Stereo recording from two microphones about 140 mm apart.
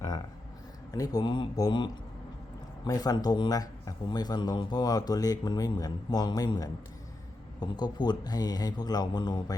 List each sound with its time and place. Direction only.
0.9 s speech: 25° left (ahead or behind)